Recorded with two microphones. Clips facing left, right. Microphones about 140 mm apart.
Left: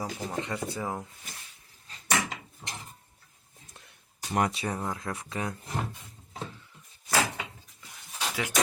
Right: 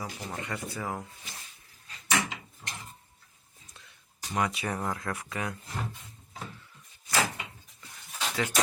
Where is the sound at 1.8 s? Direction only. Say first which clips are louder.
Even; 35° left (ahead or behind).